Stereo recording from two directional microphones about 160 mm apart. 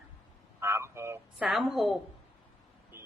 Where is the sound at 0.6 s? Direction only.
15° right (ahead or behind).